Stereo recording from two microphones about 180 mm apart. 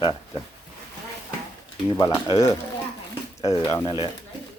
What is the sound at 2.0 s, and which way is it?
Speech, 25° left (ahead or behind).